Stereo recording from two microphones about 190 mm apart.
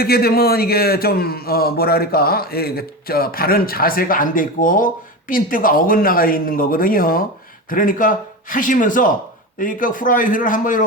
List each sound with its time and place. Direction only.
0.0 s a man's voice: 55° left (ahead or behind)